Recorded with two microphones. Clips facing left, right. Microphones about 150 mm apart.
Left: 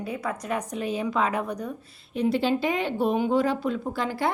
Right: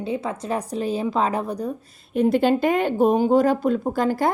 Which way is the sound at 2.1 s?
50° right (ahead or behind).